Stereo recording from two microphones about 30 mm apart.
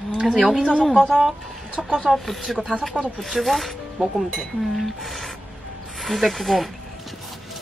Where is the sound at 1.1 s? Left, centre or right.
Centre.